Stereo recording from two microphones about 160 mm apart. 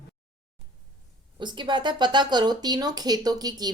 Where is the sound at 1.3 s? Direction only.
30° right (ahead or behind).